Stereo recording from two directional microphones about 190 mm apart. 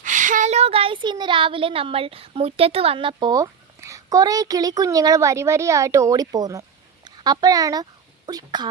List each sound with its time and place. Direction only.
0.0 s speech: 40° right (ahead or behind); by 8.7 s 20° right (ahead or behind)